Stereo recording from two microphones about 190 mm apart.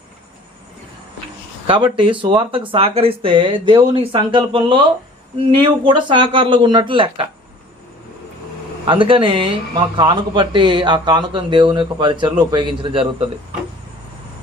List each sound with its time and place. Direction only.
1.6 s speech: 25° right (ahead or behind)
8.8 s speech: 25° right (ahead or behind)